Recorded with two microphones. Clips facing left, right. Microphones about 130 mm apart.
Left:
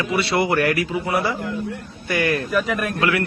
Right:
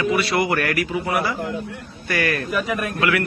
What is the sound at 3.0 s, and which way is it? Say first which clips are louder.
Speech: even; 30° left (ahead or behind).